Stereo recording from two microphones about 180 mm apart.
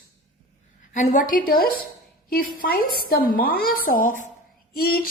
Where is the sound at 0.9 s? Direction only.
45° left (ahead or behind).